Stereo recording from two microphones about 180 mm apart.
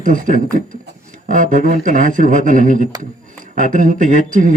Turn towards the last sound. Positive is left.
turn(degrees=-45)  # may be behind; listen again after turning